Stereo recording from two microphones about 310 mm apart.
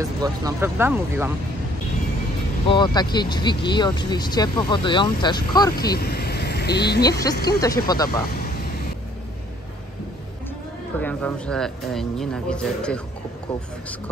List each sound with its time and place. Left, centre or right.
0.2 s speech: centre
2.7 s speech: centre
5.8 s speech: left
7.1 s speech: centre
11.0 s speech: centre